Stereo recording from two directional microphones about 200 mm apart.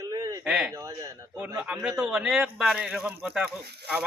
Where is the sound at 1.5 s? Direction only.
5° right (ahead or behind).